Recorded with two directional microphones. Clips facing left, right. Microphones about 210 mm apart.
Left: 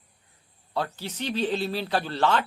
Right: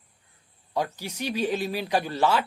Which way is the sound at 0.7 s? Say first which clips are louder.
Right 1 dB; 10° right (ahead or behind).